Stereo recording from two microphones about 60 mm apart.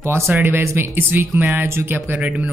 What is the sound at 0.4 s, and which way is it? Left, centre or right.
Speech, right.